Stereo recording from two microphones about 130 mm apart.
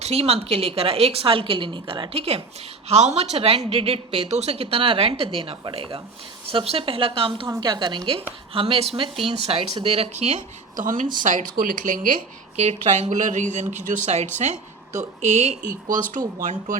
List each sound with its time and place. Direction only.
0.0 s speech: 50° right (ahead or behind); by 16.7 s 80° right